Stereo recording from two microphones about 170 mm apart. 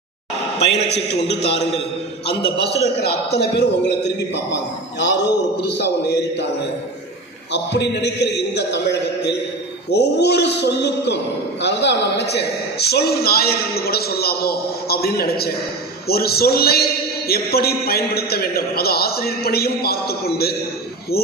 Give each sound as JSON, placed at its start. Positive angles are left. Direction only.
{"t": 0.9, "sound": "a man's voice", "side_deg": 40}
{"t": 2.2, "sound": "a man's voice", "side_deg": 70}
{"t": 7.5, "sound": "a man's voice", "side_deg": 90}